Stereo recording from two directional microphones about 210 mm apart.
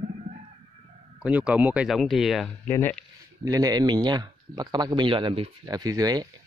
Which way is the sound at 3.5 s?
15° right (ahead or behind).